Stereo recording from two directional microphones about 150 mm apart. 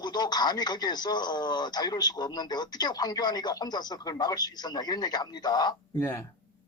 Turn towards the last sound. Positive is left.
turn(degrees=25)  # may be behind; listen again after turning